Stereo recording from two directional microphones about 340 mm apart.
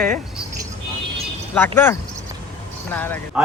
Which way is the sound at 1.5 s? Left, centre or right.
Centre.